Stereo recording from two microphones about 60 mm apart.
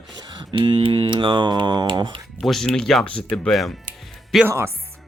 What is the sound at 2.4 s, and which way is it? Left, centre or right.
Speech, centre.